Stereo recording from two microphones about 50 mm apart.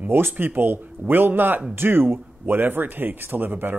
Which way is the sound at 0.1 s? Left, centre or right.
Right.